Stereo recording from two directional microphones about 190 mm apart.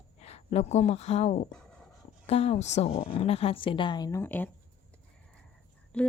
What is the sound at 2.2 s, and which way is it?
A woman's voice, 35° left (ahead or behind).